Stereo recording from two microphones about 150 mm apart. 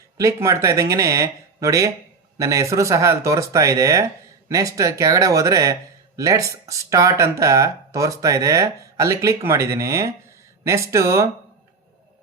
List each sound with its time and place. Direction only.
0.2 s speech: 20° right (ahead or behind)